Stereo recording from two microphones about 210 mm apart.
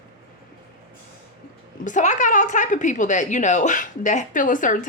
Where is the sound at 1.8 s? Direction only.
35° left (ahead or behind).